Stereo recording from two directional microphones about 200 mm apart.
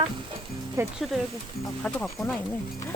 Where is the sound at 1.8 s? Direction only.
5° left (ahead or behind).